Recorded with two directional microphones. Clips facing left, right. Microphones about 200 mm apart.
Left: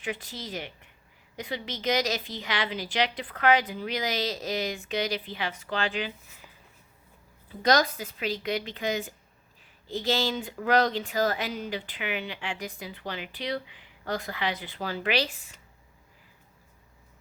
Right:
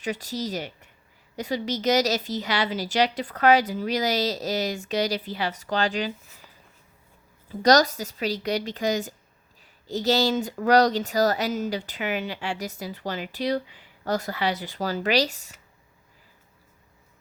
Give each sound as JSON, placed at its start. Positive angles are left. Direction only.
{"t": 0.0, "sound": "speech", "side_deg": -40}
{"t": 7.6, "sound": "speech", "side_deg": -40}